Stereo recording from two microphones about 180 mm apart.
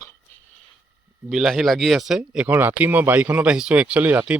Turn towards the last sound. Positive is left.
turn(degrees=-10)  # may be behind; listen again after turning